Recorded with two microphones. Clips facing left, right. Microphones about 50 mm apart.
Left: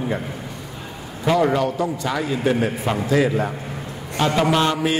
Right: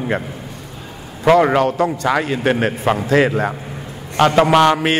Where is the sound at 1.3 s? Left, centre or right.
Right.